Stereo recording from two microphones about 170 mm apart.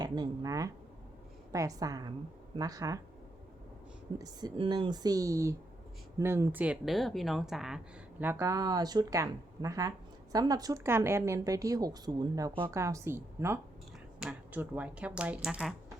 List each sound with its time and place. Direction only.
0.0 s a woman's voice: 20° right (ahead or behind)
4.2 s a woman's voice: 25° right (ahead or behind); by 7.8 s 5° right (ahead or behind)
8.2 s a woman's voice: 15° right (ahead or behind)